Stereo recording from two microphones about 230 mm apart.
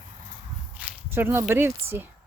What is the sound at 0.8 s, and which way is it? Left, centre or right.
Speech, centre.